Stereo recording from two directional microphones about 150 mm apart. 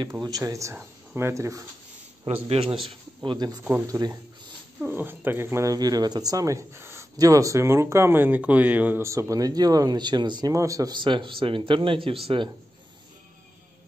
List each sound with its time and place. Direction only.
0.0 s speech: 25° right (ahead or behind)
2.4 s a man's voice: 40° right (ahead or behind)